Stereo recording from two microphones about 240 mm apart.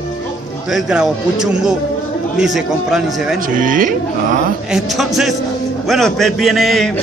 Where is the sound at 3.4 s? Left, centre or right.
Right.